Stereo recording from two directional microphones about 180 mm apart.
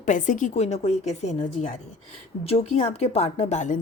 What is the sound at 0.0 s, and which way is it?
A woman's voice, 45° left (ahead or behind).